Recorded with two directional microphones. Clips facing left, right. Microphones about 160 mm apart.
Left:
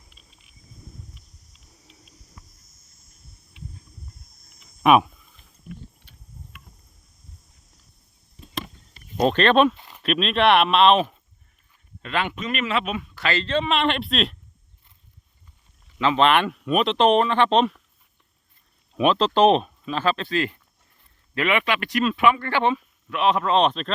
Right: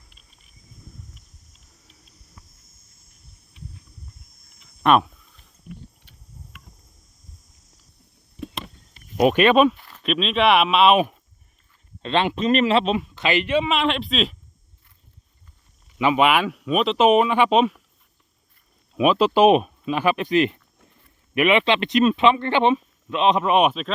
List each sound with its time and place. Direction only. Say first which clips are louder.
4.8 s a sound: left 1 dB; 5° left (ahead or behind)
9.1 s speech: right 2 dB; 10° right (ahead or behind)
9.7 s a sound: left 1 dB; 20° left (ahead or behind)
10.0 s speech: even; centre (ahead or behind)
12.0 s speech: right 6 dB; 25° right (ahead or behind); by 14.3 s centre (ahead or behind)
16.0 s speech: even; 10° right (ahead or behind)
18.9 s speech: right 2 dB; 10° right (ahead or behind)